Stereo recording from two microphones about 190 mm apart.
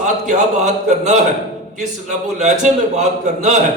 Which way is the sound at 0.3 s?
40° right (ahead or behind).